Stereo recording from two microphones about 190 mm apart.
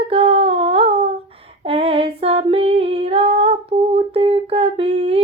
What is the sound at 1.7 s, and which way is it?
Female singing, 30° right (ahead or behind).